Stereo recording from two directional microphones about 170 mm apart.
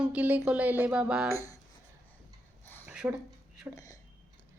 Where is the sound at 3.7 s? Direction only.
20° right (ahead or behind).